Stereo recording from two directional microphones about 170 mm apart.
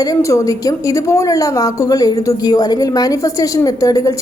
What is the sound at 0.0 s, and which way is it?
A woman's voice, 20° left (ahead or behind).